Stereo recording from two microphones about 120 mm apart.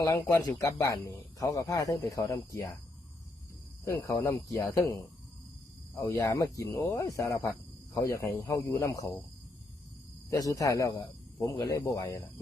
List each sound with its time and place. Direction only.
0.0 s speech: 25° left (ahead or behind)
3.8 s speech: 25° left (ahead or behind)
6.0 s speech: 20° left (ahead or behind)
10.2 s speech: 30° left (ahead or behind)